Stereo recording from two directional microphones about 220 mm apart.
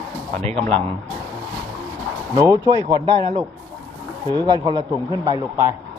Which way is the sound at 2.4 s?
15° right (ahead or behind).